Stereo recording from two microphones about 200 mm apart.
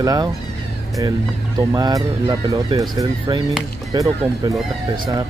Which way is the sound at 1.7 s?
20° right (ahead or behind).